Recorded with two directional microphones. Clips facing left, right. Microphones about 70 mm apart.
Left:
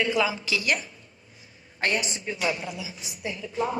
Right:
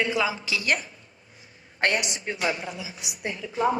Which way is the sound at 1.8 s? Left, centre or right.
Right.